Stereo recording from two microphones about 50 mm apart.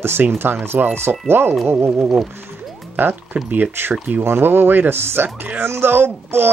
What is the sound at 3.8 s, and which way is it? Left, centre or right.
Speech, right.